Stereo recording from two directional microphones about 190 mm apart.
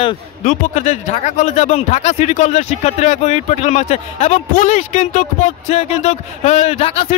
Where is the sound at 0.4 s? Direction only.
40° left (ahead or behind).